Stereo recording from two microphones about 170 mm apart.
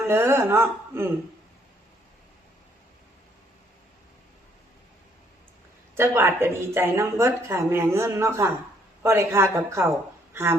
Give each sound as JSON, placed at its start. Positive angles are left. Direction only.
{"t": 0.1, "sound": "speech", "side_deg": -15}
{"t": 6.0, "sound": "a woman's voice", "side_deg": -15}